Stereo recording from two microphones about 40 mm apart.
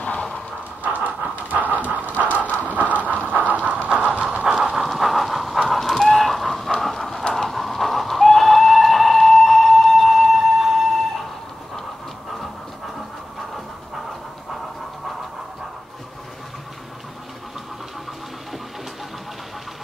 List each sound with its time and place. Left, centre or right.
0.8 s pant: right
1.5 s dog: right
2.6 s pant: right
4.6 s pant: centre
4.8 s train: centre
7.3 s goat: centre